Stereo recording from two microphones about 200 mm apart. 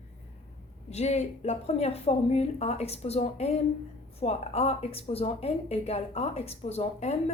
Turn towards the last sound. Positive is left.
turn(degrees=30)  # may be behind; listen again after turning